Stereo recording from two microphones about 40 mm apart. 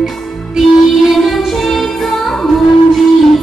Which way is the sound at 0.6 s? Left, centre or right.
Centre.